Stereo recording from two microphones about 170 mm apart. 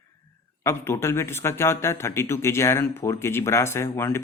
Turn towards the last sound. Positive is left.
turn(degrees=15)  # may be behind; listen again after turning